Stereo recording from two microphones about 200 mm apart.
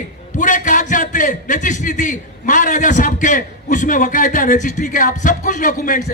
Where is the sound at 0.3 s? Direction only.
40° left (ahead or behind).